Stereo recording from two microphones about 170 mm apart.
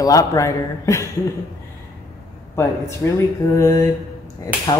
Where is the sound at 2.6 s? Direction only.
15° left (ahead or behind).